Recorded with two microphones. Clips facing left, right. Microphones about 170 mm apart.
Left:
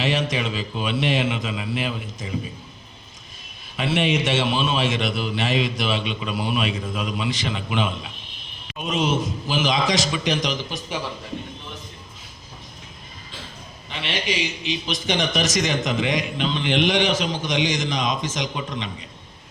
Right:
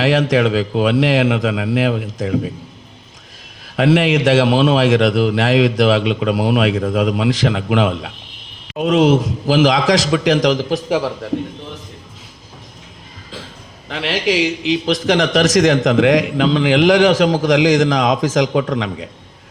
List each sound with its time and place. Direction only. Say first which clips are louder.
0.0 s a man's voice: right 9 dB; 90° right; by 2.5 s 70° right (ahead or behind)
3.8 s a man's voice: right 8 dB; 90° right
13.8 s a man's voice: right 9 dB; 90° right